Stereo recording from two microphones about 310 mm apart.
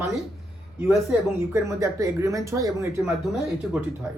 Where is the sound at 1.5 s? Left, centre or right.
Centre.